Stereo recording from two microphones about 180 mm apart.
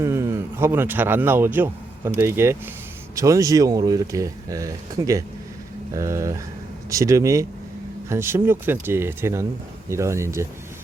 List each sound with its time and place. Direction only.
0.0 s speech: 15° right (ahead or behind)